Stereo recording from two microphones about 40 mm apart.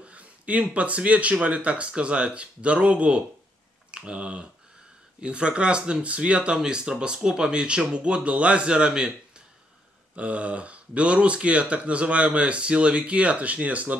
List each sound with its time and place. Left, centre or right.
0.0 s speech: right
10.1 s speech: right